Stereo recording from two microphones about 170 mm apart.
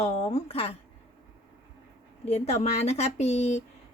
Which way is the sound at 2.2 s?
40° left (ahead or behind).